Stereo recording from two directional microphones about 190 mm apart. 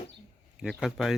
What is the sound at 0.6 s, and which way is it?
Speech, centre (ahead or behind).